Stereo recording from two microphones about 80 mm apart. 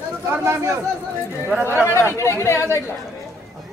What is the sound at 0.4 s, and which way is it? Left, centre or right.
Speech, right.